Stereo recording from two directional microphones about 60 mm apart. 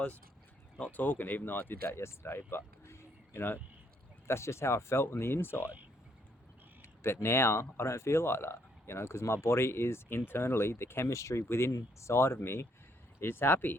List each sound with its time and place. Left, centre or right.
0.9 s speech: left
4.3 s speech: left
7.0 s speech: left